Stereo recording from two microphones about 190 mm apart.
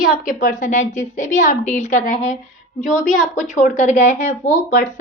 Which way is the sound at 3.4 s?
40° left (ahead or behind).